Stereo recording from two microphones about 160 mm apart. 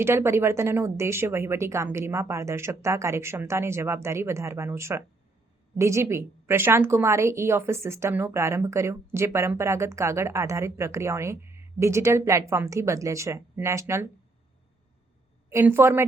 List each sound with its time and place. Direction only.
0.0 s a woman's voice: 15° right (ahead or behind)
15.4 s a woman's voice: 15° right (ahead or behind)